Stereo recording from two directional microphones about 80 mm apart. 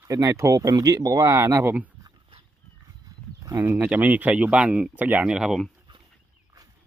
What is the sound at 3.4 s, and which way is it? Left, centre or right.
Speech, right.